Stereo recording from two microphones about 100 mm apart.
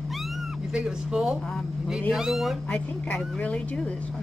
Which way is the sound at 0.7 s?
10° right (ahead or behind).